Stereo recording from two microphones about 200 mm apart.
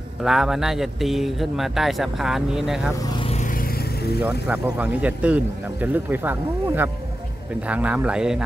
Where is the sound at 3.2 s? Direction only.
35° left (ahead or behind); by 4.2 s 55° left (ahead or behind).